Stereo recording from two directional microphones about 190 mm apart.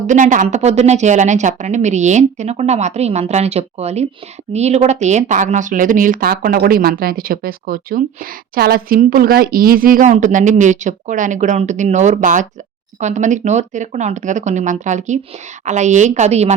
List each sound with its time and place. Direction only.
0.1 s a woman's voice: 40° right (ahead or behind)